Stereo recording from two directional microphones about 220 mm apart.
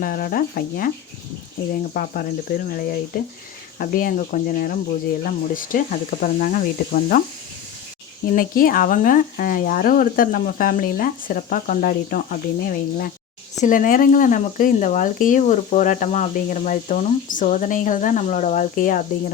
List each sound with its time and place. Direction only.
0.0 s speech: 40° left (ahead or behind)
8.4 s speech: 40° left (ahead or behind)